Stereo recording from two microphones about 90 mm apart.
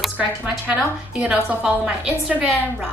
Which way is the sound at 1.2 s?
15° right (ahead or behind).